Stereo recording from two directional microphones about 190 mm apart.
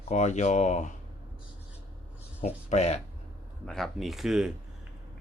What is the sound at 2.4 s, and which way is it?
Speech, 35° left (ahead or behind).